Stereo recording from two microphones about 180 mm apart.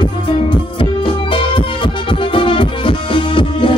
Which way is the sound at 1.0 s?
25° left (ahead or behind).